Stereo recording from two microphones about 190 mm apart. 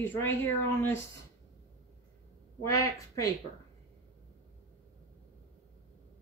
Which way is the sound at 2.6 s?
15° left (ahead or behind).